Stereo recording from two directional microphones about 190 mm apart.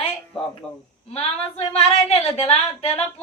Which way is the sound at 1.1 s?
30° left (ahead or behind).